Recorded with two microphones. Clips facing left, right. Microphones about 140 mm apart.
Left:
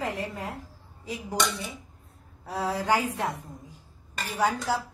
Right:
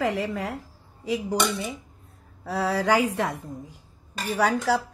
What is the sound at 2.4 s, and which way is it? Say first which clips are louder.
Speech: right 4 dB; 85° right.